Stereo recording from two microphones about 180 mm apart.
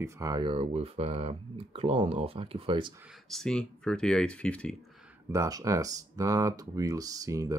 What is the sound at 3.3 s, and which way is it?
Speech, 5° left (ahead or behind).